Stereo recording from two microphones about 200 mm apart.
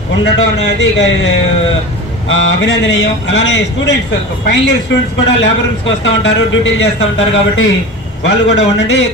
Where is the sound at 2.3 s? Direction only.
65° left (ahead or behind).